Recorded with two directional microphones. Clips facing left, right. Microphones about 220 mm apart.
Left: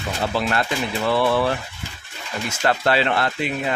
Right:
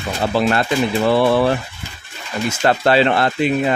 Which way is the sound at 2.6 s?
30° right (ahead or behind).